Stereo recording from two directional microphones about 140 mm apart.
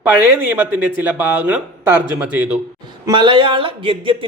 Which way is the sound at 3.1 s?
35° right (ahead or behind).